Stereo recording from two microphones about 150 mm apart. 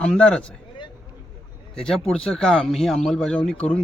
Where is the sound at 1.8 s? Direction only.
5° left (ahead or behind).